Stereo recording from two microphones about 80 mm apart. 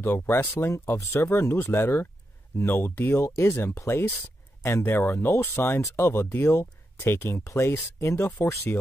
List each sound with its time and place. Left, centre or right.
0.0 s speech: left